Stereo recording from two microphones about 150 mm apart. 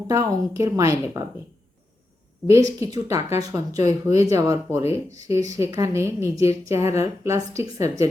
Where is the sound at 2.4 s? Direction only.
20° right (ahead or behind).